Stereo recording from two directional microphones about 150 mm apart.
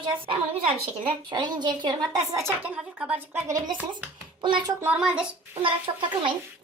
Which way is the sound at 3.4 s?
25° right (ahead or behind).